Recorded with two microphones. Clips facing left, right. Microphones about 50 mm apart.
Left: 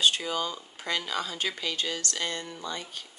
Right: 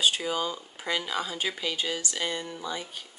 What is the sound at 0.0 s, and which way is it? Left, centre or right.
Speech, centre.